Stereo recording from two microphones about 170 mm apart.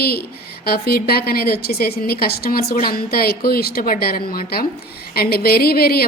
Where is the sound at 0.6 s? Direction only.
65° left (ahead or behind).